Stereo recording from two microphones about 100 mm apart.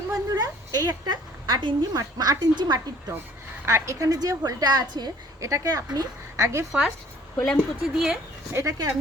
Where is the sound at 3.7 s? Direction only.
30° right (ahead or behind).